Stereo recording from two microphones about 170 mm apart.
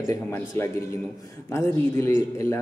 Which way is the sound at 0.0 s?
15° left (ahead or behind).